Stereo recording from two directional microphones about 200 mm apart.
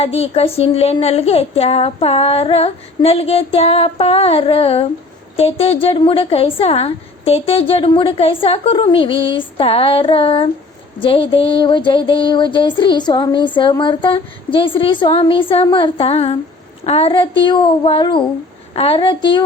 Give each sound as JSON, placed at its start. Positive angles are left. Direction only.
{"t": 0.0, "sound": "a woman's voice", "side_deg": 30}